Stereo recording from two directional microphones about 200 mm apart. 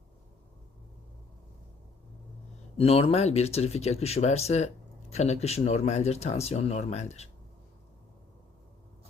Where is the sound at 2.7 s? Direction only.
30° left (ahead or behind).